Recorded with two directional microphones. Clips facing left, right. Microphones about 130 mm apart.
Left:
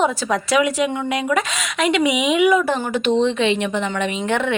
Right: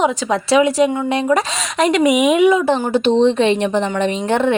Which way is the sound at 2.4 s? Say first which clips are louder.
Right 3 dB; 25° right (ahead or behind).